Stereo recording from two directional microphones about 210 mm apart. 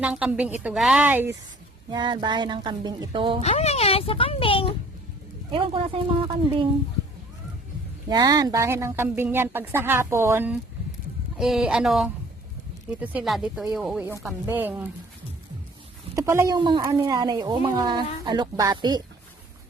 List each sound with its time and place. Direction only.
0.0 s speech: 5° right (ahead or behind)
1.9 s speech: 20° right (ahead or behind)
3.4 s speech: 30° left (ahead or behind)
5.5 s speech: 25° right (ahead or behind)
8.1 s speech: 20° right (ahead or behind)
16.1 s speech: 15° right (ahead or behind)